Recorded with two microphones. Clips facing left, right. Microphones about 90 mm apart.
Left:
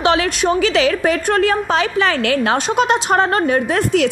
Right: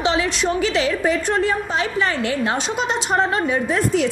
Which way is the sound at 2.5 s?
55° left (ahead or behind).